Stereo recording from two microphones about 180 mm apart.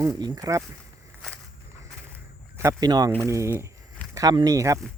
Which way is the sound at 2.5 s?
15° right (ahead or behind).